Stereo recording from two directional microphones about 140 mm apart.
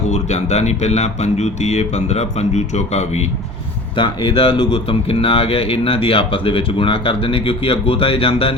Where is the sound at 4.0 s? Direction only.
35° left (ahead or behind).